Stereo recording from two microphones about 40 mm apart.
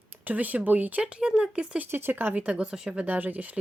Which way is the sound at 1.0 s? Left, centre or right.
Right.